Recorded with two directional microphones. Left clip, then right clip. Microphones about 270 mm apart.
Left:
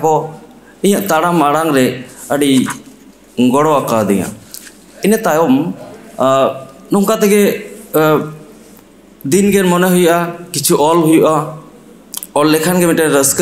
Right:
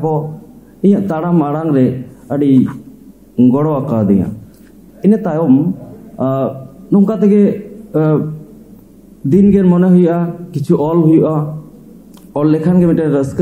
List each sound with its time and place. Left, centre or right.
0.0 s a man's voice: centre